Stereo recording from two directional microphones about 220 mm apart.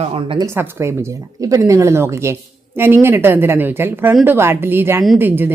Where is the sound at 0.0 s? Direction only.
25° right (ahead or behind).